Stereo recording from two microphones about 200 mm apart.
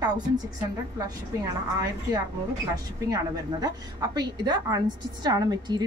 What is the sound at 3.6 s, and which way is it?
A woman's voice, 20° right (ahead or behind).